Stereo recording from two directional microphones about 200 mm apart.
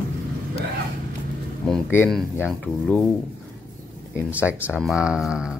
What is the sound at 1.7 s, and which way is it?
Speech, 5° left (ahead or behind).